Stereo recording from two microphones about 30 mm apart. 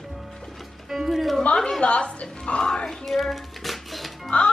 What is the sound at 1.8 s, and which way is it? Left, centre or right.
Speech, left.